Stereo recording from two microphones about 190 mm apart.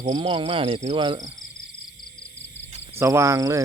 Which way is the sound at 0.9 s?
20° right (ahead or behind).